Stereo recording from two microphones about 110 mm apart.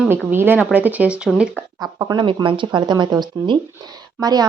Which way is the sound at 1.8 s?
35° right (ahead or behind).